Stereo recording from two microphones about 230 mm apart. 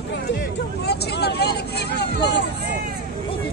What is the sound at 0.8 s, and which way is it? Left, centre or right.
Speech, left.